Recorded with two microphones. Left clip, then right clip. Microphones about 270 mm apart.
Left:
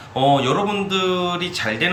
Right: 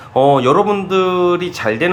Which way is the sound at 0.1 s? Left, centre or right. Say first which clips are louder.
Right 6 dB; centre.